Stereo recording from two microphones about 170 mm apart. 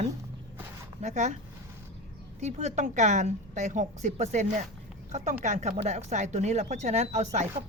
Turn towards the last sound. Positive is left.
turn(degrees=-45)  # may be behind; listen again after turning